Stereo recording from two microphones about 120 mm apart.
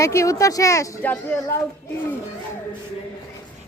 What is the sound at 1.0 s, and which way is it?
Speech, 15° left (ahead or behind).